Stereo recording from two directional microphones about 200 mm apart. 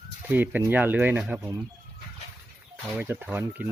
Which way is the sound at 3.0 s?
10° right (ahead or behind).